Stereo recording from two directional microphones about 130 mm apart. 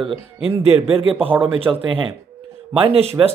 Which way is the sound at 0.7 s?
45° right (ahead or behind).